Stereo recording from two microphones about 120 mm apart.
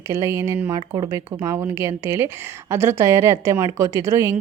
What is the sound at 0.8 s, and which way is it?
Speech, 40° right (ahead or behind).